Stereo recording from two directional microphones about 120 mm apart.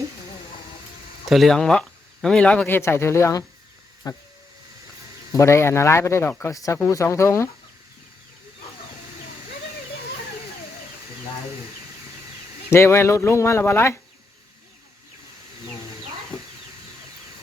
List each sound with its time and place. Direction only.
1.3 s speech: centre (ahead or behind); by 4.2 s 30° left (ahead or behind)
5.3 s speech: 25° left (ahead or behind)
12.7 s speech: 20° left (ahead or behind)